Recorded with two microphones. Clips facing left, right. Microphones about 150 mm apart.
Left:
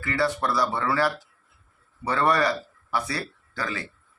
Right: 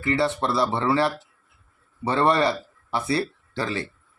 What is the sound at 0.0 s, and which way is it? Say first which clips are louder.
Speech: right 2 dB; 25° right (ahead or behind).